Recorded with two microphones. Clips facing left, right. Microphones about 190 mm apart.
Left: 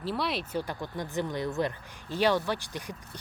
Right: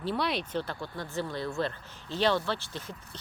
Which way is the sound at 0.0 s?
Centre (ahead or behind).